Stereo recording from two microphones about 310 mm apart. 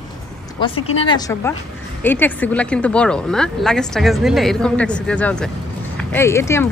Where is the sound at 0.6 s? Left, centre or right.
Centre.